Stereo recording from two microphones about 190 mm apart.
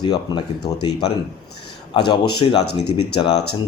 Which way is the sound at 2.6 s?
60° left (ahead or behind).